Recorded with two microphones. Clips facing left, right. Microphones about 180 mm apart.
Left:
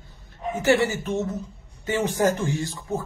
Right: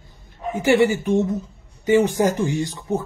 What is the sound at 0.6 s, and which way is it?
Speech, 15° right (ahead or behind).